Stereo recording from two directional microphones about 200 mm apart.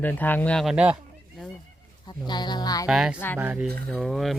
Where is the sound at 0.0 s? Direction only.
10° left (ahead or behind).